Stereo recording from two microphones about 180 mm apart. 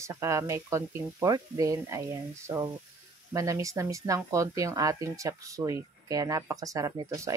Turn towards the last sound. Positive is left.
turn(degrees=-15)  # may be behind; listen again after turning